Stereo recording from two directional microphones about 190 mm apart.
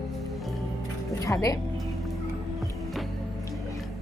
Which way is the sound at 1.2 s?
15° left (ahead or behind).